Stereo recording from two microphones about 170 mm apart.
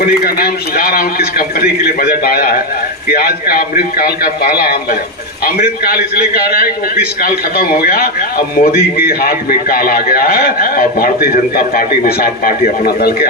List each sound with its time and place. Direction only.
0.0 s a man's voice: 60° left (ahead or behind)